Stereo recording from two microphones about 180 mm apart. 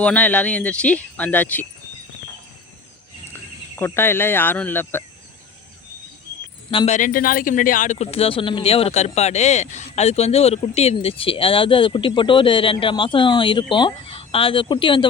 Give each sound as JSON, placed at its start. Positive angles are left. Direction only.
{"t": 0.0, "sound": "speech", "side_deg": 10}
{"t": 3.8, "sound": "speech", "side_deg": 10}
{"t": 6.7, "sound": "speech", "side_deg": 35}